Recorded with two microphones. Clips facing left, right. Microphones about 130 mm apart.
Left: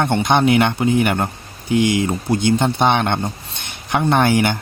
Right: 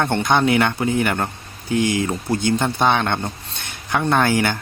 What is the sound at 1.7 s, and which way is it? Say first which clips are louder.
Speech: left 3 dB; 40° right (ahead or behind).